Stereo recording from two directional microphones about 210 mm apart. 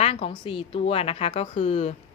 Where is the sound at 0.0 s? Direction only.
25° left (ahead or behind).